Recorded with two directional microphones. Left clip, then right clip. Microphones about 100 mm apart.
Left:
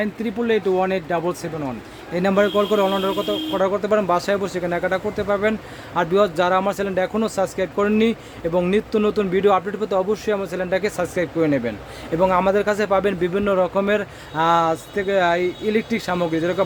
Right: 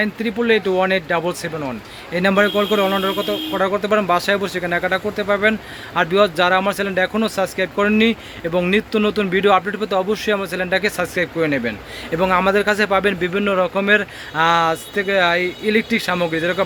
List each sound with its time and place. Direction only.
0.0 s speech: 10° left (ahead or behind)
2.9 s speech: centre (ahead or behind)
3.6 s a man's voice: 15° left (ahead or behind)